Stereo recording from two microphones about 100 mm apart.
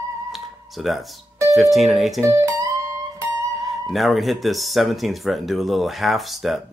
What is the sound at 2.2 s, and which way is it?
Music, 30° right (ahead or behind).